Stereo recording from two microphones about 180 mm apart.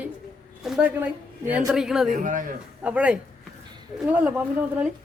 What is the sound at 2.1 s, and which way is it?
Speech, 45° right (ahead or behind).